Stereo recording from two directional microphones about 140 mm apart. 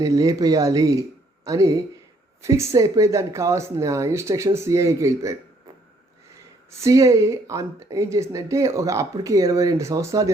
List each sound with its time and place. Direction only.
0.0 s speech: 25° right (ahead or behind)